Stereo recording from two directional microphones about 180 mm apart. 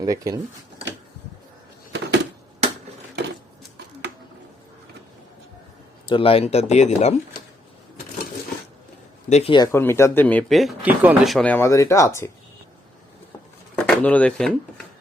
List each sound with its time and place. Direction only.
0.0 s speech: 20° right (ahead or behind)
6.1 s speech: 30° left (ahead or behind)
9.3 s speech: 30° left (ahead or behind)
9.7 s speech: 15° left (ahead or behind)
13.7 s a sound: 5° left (ahead or behind)